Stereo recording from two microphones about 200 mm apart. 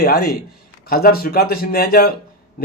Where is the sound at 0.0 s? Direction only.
50° left (ahead or behind).